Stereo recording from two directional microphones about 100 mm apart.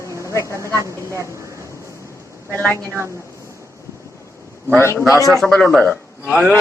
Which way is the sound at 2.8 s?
30° right (ahead or behind).